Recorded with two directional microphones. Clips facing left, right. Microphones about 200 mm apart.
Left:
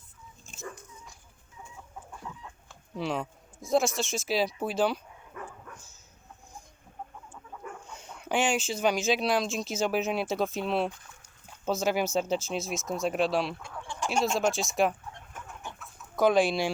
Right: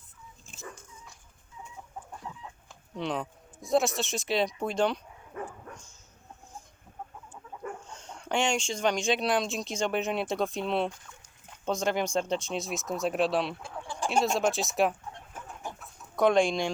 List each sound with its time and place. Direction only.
2.3 s chicken: 25° right (ahead or behind)
2.9 s speech: centre (ahead or behind)
5.3 s dog: 35° right (ahead or behind)
7.9 s speech: 10° left (ahead or behind)
13.6 s chicken: 30° right (ahead or behind)
14.1 s speech: centre (ahead or behind)
16.1 s speech: centre (ahead or behind)